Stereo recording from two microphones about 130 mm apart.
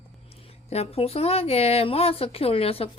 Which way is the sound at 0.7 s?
50° left (ahead or behind).